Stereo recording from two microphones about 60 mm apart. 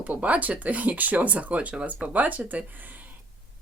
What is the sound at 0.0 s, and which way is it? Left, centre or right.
Speech, right.